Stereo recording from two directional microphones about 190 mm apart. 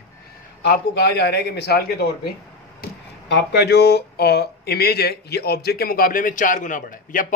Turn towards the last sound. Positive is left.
turn(degrees=45)  # may be behind; listen again after turning